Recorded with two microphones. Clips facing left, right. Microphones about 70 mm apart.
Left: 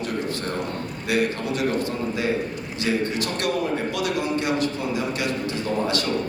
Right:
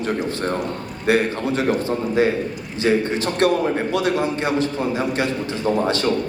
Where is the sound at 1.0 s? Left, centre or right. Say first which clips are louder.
Right 5 dB; right.